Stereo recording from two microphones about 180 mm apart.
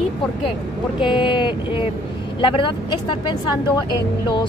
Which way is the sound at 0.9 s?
25° left (ahead or behind).